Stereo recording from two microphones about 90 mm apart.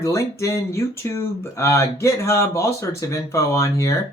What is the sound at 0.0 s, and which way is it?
Speech, 35° left (ahead or behind).